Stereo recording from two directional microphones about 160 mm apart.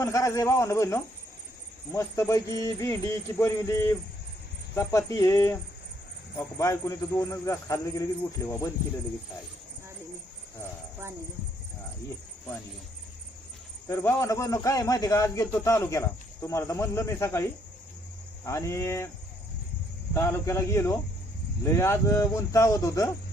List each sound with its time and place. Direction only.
0.0 s a man's voice: 20° left (ahead or behind)
13.8 s a man's voice: 15° left (ahead or behind)
18.4 s a man's voice: 20° left (ahead or behind)
20.1 s a man's voice: 15° left (ahead or behind)